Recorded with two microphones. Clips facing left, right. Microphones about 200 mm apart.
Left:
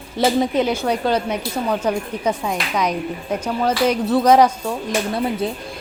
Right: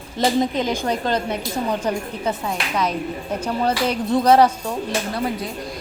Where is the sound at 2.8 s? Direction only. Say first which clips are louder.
Even; 10° left (ahead or behind).